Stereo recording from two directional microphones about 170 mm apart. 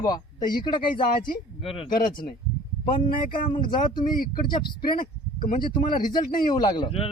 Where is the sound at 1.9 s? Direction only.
55° left (ahead or behind).